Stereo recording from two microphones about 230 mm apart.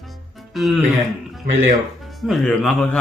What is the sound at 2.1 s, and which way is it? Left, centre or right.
Speech, centre.